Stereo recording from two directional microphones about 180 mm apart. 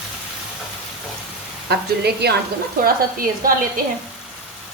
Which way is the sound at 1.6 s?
65° right (ahead or behind).